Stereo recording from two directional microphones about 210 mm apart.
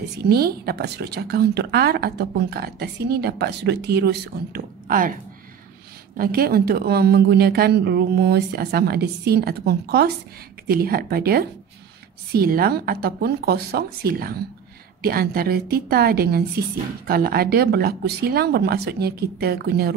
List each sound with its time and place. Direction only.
0.2 s speech: 50° right (ahead or behind)
6.1 s speech: 45° right (ahead or behind)